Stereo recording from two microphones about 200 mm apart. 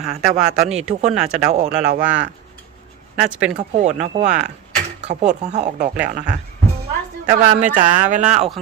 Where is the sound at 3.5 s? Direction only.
35° right (ahead or behind).